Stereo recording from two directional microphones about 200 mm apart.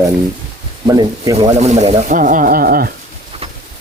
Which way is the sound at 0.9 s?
15° right (ahead or behind).